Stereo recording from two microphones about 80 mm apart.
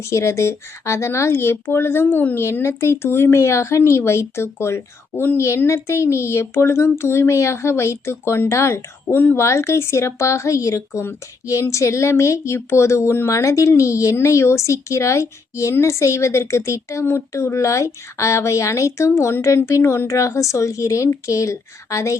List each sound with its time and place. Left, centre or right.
0.0 s a woman's voice: left